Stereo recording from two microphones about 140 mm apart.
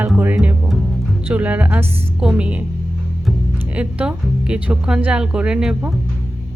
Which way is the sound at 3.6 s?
10° right (ahead or behind).